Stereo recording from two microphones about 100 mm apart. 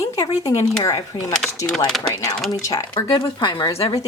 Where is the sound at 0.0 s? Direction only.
35° left (ahead or behind).